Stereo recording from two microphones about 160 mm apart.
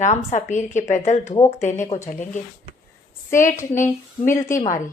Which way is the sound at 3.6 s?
15° left (ahead or behind).